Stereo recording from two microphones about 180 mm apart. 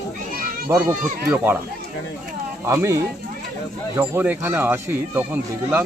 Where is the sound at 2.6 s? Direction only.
15° right (ahead or behind).